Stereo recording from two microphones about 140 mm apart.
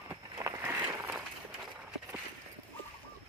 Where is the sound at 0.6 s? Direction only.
15° right (ahead or behind).